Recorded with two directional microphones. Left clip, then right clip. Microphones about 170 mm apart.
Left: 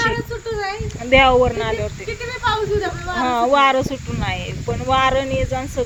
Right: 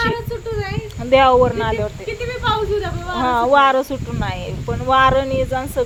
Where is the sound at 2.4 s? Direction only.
10° right (ahead or behind).